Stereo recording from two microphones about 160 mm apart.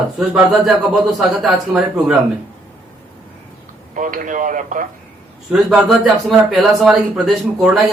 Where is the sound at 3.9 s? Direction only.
55° right (ahead or behind).